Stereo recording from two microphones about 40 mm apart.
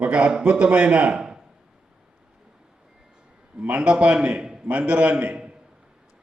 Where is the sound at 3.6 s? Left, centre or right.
Right.